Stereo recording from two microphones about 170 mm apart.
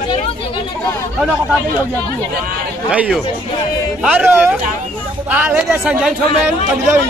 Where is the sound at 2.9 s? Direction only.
5° right (ahead or behind).